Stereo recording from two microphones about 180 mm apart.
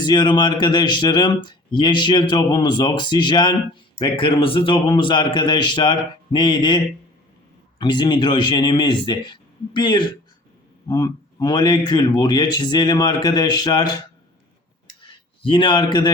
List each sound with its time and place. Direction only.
0.0 s speech: 25° left (ahead or behind)
7.8 s speech: 25° left (ahead or behind)
15.0 s a man's voice: 25° left (ahead or behind)